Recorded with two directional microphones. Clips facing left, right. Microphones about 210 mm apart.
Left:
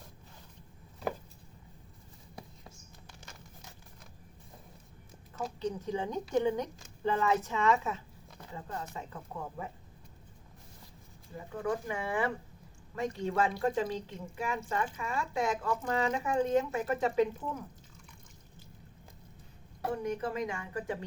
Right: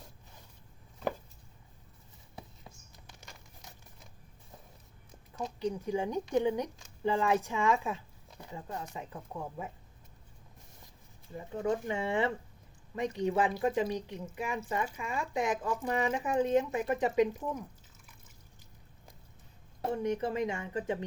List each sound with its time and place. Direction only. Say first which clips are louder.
5.5 s speech: right 2 dB; 10° right (ahead or behind)
11.3 s a woman's voice: right 2 dB; 25° right (ahead or behind)
19.8 s a woman's voice: right 2 dB; 25° right (ahead or behind)